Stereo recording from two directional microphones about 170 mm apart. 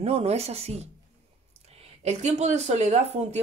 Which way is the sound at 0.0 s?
35° right (ahead or behind).